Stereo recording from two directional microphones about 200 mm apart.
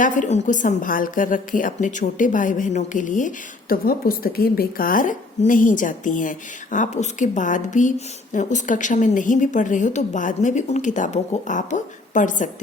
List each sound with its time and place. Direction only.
0.0 s a woman's voice: 40° left (ahead or behind)